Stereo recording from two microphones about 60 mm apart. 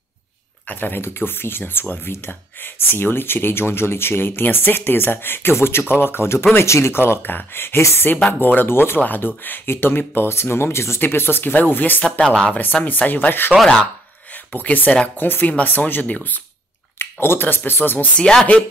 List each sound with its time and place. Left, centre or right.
0.7 s speech: left
12.0 s speech: centre
12.8 s speech: left
13.5 s speech: centre
14.3 s speech: left
17.0 s speech: left
18.1 s speech: centre